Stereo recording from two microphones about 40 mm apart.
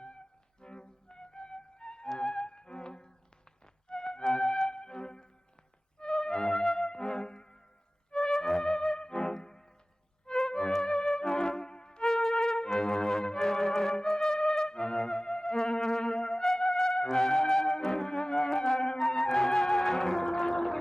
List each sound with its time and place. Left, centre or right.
0.0 s music: left